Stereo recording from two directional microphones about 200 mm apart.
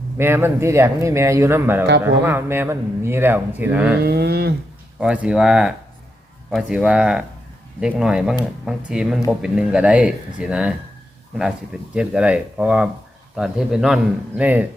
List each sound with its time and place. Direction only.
0.2 s speech: 10° right (ahead or behind)
4.0 s a sound: 55° right (ahead or behind)
4.9 s speech: 5° right (ahead or behind)
11.9 s speech: 5° right (ahead or behind)